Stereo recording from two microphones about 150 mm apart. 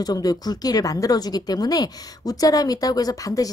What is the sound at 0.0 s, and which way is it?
Speech, 25° left (ahead or behind).